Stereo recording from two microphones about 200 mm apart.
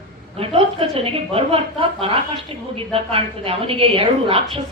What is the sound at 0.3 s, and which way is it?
A woman's voice, 30° right (ahead or behind).